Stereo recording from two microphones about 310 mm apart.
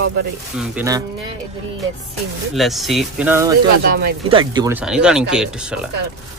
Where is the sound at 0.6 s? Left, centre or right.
Centre.